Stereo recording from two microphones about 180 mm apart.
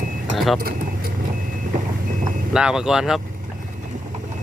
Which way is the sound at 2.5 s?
5° right (ahead or behind).